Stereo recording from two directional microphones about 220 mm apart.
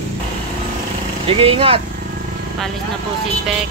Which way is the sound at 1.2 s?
25° right (ahead or behind).